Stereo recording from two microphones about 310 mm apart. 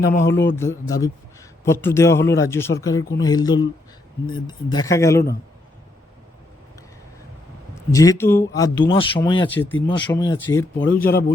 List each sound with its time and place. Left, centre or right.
0.0 s a man's voice: left
0.3 s speech: centre
7.8 s speech: centre
11.0 s a man's voice: left